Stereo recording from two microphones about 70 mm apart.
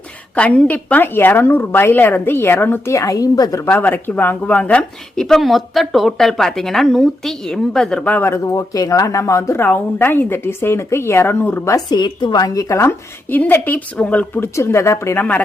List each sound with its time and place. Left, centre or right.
0.3 s a woman's voice: centre
2.9 s speech: left
3.7 s speech: left; by 8.0 s centre
8.2 s speech: left
9.6 s a woman's voice: left
11.9 s a woman's voice: left
12.5 s speech: left
13.3 s a woman's voice: left
14.4 s a woman's voice: left
15.2 s a woman's voice: left